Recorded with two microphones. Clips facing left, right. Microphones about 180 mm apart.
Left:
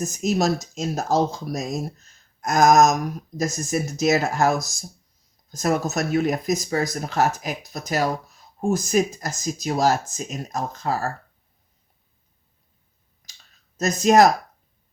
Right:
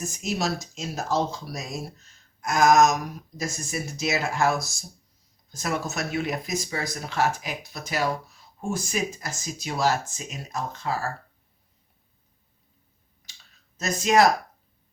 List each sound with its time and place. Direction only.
0.0 s speech: 45° left (ahead or behind)
13.7 s speech: 45° left (ahead or behind)